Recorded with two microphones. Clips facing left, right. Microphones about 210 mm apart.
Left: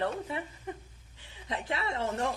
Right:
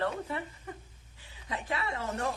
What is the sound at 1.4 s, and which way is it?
Speech, 25° left (ahead or behind).